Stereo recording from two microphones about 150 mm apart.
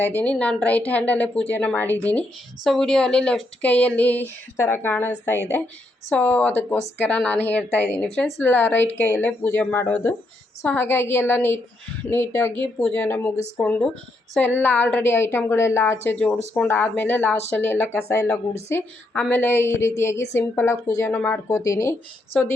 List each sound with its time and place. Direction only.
0.0 s a woman's voice: 10° left (ahead or behind)